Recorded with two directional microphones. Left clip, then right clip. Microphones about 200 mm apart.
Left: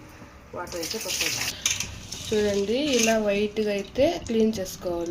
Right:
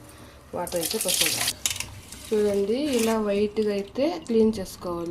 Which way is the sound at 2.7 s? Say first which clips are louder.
Left 2 dB; 30° right (ahead or behind).